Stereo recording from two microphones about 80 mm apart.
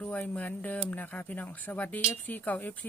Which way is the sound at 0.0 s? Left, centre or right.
Centre.